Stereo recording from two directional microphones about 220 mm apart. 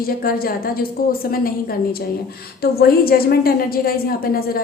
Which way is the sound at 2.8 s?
45° left (ahead or behind).